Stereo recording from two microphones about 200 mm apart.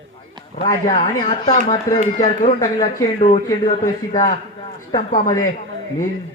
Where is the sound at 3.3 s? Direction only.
25° left (ahead or behind).